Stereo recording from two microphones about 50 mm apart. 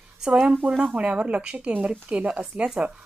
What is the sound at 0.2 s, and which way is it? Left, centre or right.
A woman's voice, centre.